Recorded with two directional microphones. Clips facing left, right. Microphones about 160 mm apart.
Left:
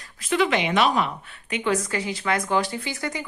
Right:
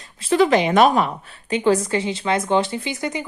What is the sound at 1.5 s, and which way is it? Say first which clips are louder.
Speech: right 6 dB; 30° right (ahead or behind).